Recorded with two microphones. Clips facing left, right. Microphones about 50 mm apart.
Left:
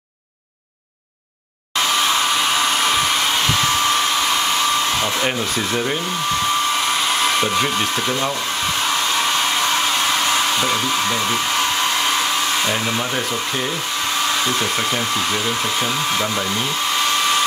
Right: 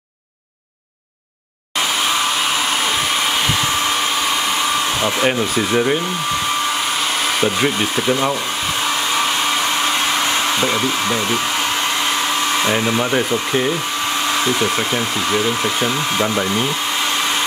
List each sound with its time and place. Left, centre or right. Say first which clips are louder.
5.0 s hair dryer: right 3 dB; centre
7.3 s hair dryer: right 1 dB; centre
10.3 s hair dryer: right 1 dB; centre
12.6 s hair dryer: right 4 dB; centre